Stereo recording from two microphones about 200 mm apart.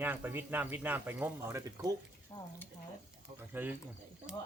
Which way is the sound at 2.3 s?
20° left (ahead or behind).